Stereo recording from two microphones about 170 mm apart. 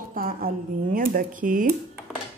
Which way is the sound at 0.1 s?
60° right (ahead or behind).